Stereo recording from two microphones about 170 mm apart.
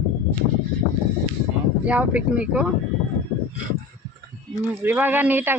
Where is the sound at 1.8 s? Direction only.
10° right (ahead or behind).